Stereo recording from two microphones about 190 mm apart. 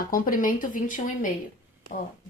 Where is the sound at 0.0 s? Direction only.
45° left (ahead or behind).